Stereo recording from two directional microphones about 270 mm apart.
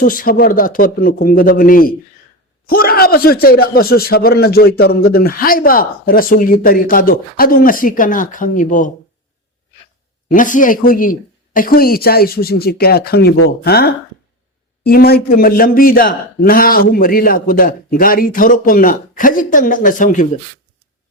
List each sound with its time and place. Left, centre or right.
0.0 s a man's voice: left
10.2 s a man's voice: left